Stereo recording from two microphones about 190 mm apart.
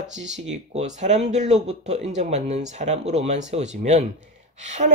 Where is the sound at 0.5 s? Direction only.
40° right (ahead or behind).